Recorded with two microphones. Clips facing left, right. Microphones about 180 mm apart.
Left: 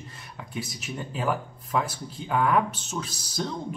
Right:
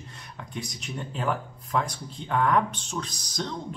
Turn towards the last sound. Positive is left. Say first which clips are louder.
# left 2 dB
turn(degrees=5)  # may be behind; listen again after turning